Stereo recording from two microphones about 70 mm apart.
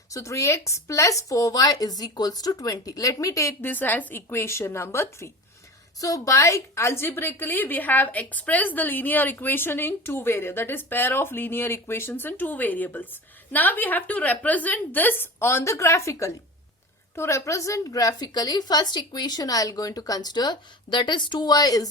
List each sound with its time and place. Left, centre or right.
0.1 s a woman's voice: left
3.6 s a woman's voice: left
6.0 s a woman's voice: left